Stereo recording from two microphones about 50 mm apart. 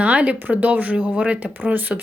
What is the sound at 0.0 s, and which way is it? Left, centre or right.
A woman's voice, right.